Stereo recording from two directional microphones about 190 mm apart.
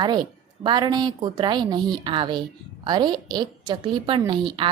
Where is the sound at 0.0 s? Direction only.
25° right (ahead or behind).